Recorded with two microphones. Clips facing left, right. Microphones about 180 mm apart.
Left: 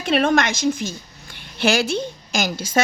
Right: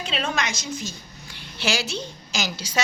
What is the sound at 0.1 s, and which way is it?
A woman's voice, 55° left (ahead or behind).